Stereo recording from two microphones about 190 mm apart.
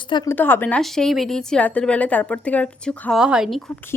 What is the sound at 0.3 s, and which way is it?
A woman's voice, 10° left (ahead or behind).